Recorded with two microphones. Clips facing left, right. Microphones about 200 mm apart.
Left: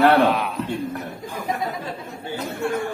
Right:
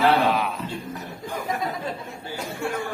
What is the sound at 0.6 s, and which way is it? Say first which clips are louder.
Speech: left 5 dB; 60° left (ahead or behind).